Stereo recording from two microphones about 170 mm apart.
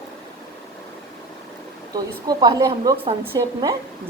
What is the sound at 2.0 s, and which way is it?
A woman's voice, 20° right (ahead or behind).